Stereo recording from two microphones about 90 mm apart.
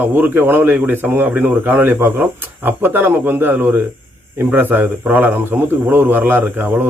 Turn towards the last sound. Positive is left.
turn(degrees=-20)  # may be behind; listen again after turning